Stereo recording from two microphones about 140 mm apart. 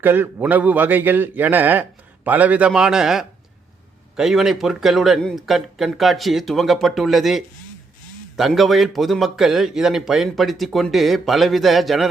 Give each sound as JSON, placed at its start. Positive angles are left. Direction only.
{"t": 0.0, "sound": "a man's voice", "side_deg": -15}